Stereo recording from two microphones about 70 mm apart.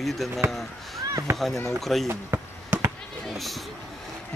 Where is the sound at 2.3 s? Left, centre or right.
Right.